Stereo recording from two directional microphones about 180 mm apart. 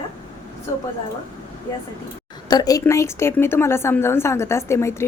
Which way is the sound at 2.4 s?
20° left (ahead or behind).